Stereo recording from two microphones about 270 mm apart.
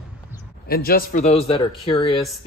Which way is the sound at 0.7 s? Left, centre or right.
Left.